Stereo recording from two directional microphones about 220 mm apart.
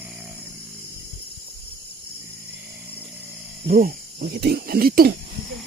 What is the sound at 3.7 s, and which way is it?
Speech, 40° right (ahead or behind).